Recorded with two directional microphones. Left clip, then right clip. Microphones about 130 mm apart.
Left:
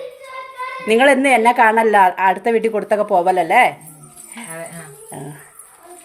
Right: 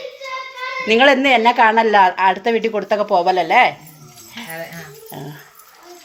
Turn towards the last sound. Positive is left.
turn(degrees=10)  # may be behind; listen again after turning